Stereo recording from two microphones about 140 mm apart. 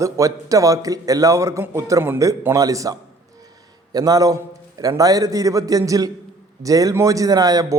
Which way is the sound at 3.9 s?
25° right (ahead or behind).